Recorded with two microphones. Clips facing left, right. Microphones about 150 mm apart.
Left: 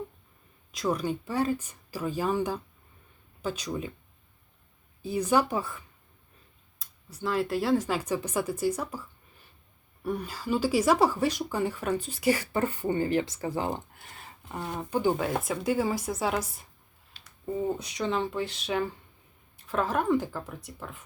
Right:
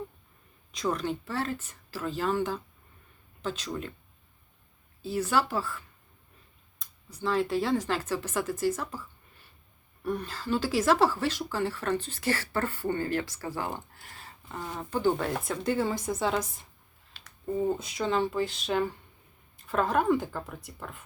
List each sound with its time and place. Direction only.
0.7 s speech: 5° left (ahead or behind)
5.0 s speech: 15° left (ahead or behind)
6.7 s speech: 5° left (ahead or behind); by 13.8 s 20° left (ahead or behind)
14.8 s speech: 15° left (ahead or behind)
17.7 s speech: centre (ahead or behind)